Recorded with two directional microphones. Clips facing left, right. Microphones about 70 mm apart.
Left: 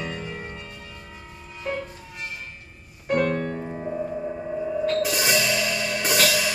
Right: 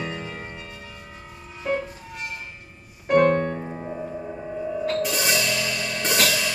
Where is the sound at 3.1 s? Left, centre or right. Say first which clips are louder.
Right 6 dB; right.